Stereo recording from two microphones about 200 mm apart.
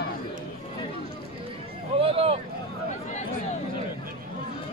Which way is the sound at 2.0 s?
30° right (ahead or behind).